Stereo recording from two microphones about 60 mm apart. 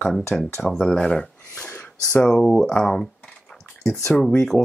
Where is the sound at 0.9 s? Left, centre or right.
Centre.